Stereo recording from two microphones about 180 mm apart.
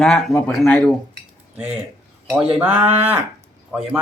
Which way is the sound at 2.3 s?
5° right (ahead or behind).